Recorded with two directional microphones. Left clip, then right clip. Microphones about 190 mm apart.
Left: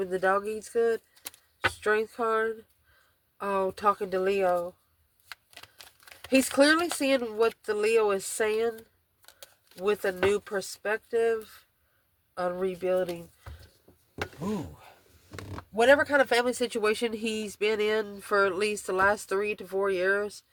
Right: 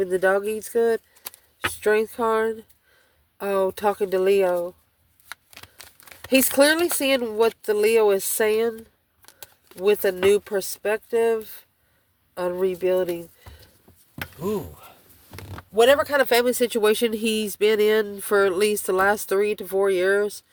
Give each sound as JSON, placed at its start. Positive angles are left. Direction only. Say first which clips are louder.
{"t": 0.0, "sound": "speech", "louder": "right 6 dB", "side_deg": -45}
{"t": 15.4, "sound": "speech", "louder": "right 7 dB", "side_deg": -50}